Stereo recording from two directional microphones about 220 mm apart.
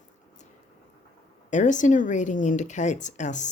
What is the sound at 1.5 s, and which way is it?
Speech, 35° left (ahead or behind).